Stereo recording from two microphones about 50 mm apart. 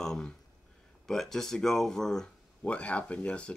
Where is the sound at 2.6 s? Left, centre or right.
Left.